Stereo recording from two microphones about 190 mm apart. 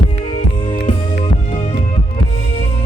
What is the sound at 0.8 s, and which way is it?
Music, 35° left (ahead or behind).